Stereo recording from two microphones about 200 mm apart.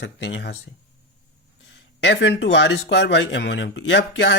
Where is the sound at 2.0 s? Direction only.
60° left (ahead or behind).